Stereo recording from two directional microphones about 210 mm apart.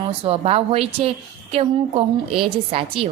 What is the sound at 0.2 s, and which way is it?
Speech, 30° right (ahead or behind).